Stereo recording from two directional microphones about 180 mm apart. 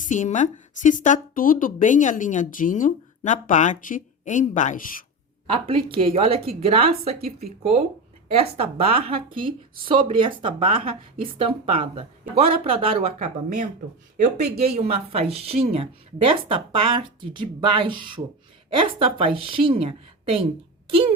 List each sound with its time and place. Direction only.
0.1 s a woman's voice: 45° left (ahead or behind)
5.5 s a woman's voice: 30° right (ahead or behind)
14.6 s a woman's voice: 35° right (ahead or behind)